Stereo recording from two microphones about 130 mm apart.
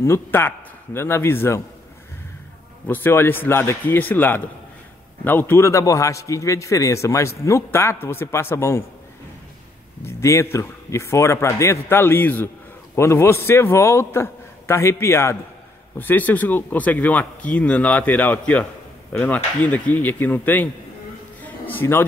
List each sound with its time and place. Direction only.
0.0 s a man's voice: 20° left (ahead or behind)
2.9 s a man's voice: 15° left (ahead or behind)
10.0 s a man's voice: 20° left (ahead or behind)
21.4 s a sound: 15° left (ahead or behind)